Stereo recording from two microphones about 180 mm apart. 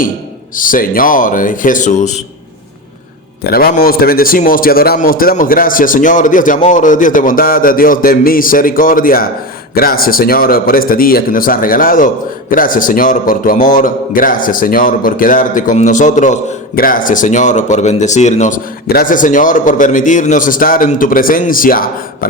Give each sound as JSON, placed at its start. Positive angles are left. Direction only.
{"t": 0.5, "sound": "a man's voice", "side_deg": 50}
{"t": 3.4, "sound": "a man's voice", "side_deg": 55}